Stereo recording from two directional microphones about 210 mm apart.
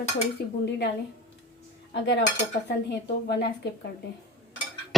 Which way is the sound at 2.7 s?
50° left (ahead or behind).